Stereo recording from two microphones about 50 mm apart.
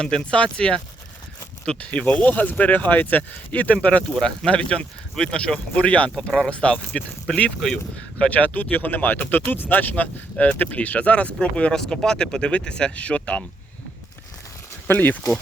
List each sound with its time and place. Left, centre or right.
0.0 s speech: centre
1.8 s speech: left
6.5 s speech: left
8.2 s speech: left
14.8 s speech: left